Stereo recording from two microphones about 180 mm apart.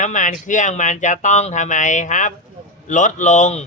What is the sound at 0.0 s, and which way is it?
Speech, 45° left (ahead or behind).